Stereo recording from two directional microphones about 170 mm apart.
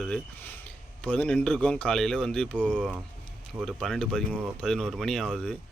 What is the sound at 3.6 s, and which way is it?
Speech, centre (ahead or behind).